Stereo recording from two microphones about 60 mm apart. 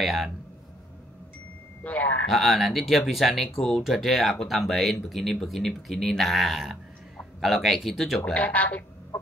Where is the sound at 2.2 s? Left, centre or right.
Centre.